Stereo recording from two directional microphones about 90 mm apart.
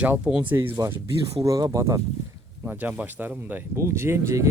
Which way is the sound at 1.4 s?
40° right (ahead or behind).